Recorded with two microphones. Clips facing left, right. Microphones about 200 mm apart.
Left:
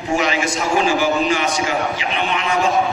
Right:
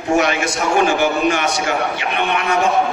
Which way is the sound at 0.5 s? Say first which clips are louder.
Right 3 dB; 60° right (ahead or behind).